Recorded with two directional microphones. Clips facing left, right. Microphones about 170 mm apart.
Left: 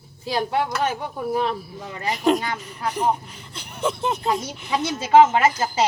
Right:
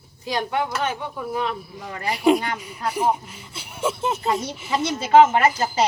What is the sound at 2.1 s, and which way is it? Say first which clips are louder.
Speech: right 2 dB; 10° right (ahead or behind).